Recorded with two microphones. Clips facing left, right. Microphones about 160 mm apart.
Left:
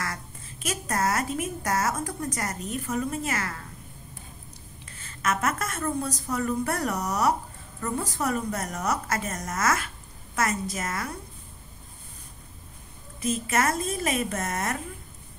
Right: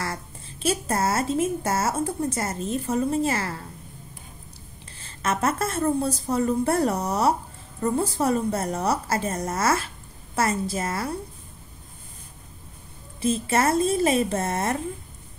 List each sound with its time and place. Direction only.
0.0 s a woman's voice: 30° right (ahead or behind)
4.9 s a woman's voice: 30° right (ahead or behind)
13.2 s a woman's voice: 30° right (ahead or behind)